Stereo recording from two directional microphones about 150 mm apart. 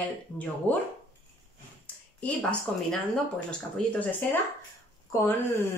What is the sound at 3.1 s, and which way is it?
Speech, 10° left (ahead or behind).